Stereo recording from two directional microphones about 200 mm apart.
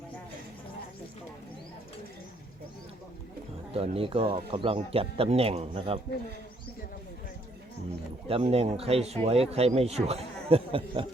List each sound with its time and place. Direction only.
3.8 s speech: 30° right (ahead or behind)
8.3 s speech: 30° right (ahead or behind)